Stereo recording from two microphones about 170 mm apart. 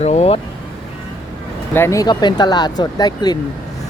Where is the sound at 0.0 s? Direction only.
40° left (ahead or behind).